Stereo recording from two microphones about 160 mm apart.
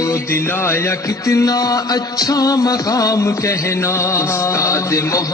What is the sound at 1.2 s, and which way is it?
Music, 20° left (ahead or behind).